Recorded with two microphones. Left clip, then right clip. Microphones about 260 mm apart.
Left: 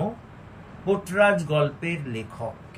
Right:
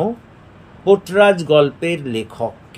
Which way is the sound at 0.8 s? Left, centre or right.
Right.